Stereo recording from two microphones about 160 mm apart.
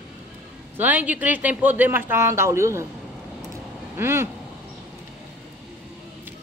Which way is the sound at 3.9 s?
15° right (ahead or behind).